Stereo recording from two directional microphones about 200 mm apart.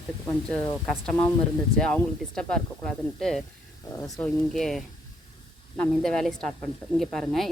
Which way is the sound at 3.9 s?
15° left (ahead or behind).